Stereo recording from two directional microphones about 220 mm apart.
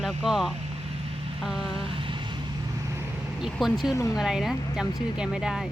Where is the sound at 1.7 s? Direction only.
25° right (ahead or behind).